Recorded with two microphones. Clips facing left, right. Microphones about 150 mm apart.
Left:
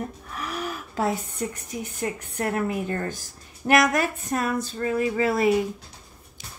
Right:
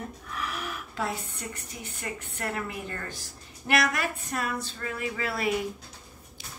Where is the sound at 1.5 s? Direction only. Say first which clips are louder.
Left 7 dB; 40° left (ahead or behind).